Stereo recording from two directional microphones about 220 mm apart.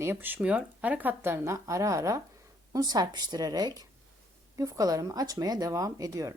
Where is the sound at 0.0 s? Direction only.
10° right (ahead or behind).